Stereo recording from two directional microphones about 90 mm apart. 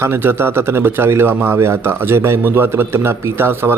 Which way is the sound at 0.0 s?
25° right (ahead or behind).